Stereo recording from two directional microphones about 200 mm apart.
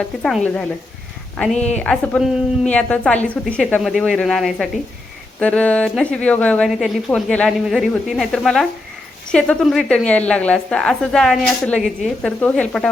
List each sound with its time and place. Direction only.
0.2 s a woman's voice: 5° left (ahead or behind)
1.5 s a woman's voice: 35° left (ahead or behind)
1.8 s a woman's voice: 5° left (ahead or behind)